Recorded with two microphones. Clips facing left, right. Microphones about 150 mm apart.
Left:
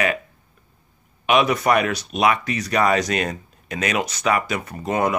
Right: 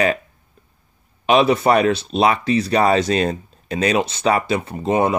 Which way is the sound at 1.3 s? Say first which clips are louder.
Right 3 dB; 30° right (ahead or behind).